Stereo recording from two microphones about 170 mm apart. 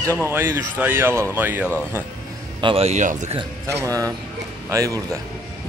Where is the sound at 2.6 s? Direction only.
35° right (ahead or behind).